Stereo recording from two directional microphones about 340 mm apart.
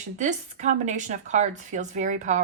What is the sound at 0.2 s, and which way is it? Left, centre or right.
A woman's voice, right.